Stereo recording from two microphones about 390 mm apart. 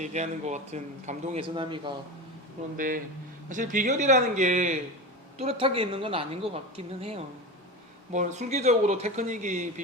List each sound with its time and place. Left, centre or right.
0.0 s speech: centre